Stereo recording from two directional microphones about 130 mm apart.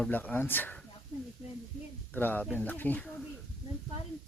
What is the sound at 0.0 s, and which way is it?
Speech, 10° left (ahead or behind).